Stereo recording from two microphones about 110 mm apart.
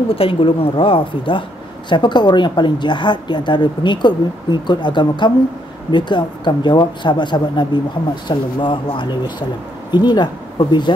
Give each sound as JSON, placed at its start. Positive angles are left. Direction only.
{"t": 0.1, "sound": "a woman's voice", "side_deg": 55}